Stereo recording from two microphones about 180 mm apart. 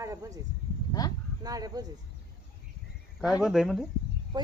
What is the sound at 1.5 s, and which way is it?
Speech, 20° right (ahead or behind).